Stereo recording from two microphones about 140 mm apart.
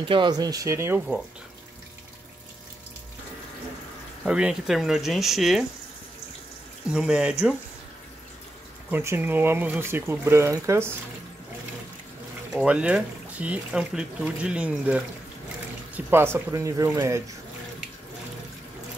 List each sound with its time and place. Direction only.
0.0 s speech: 35° right (ahead or behind); by 1.0 s 15° right (ahead or behind)
4.2 s speech: 5° right (ahead or behind)
6.9 s speech: 5° right (ahead or behind)
8.9 s speech: 15° right (ahead or behind)
12.5 s speech: 10° right (ahead or behind)